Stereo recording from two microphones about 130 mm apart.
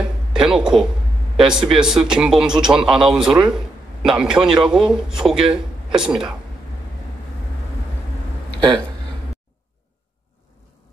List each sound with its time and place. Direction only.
0.0 s a sound: 5° right (ahead or behind)
1.5 s a man's voice: 5° right (ahead or behind)
8.5 s speech: 30° right (ahead or behind)